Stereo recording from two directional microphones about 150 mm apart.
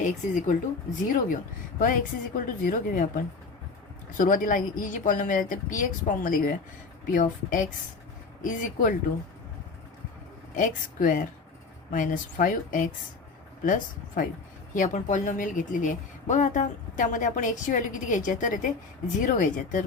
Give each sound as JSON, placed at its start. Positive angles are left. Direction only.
{"t": 0.0, "sound": "a woman's voice", "side_deg": 55}
{"t": 4.2, "sound": "a woman's voice", "side_deg": 60}
{"t": 10.5, "sound": "a woman's voice", "side_deg": 60}